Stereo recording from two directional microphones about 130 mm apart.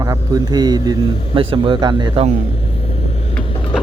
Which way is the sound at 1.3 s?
40° right (ahead or behind).